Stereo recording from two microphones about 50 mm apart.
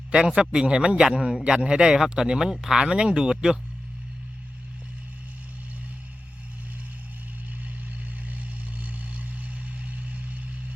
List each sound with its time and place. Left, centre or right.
0.1 s speech: centre
8.3 s vehicle: right